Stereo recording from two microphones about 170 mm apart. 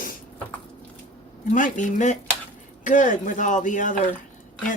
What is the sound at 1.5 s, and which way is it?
Speech, 50° left (ahead or behind).